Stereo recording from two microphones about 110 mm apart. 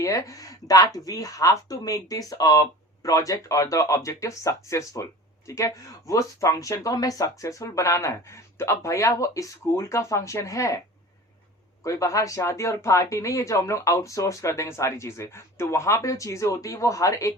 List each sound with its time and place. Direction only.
0.0 s speech: 35° left (ahead or behind)
11.8 s speech: 30° left (ahead or behind)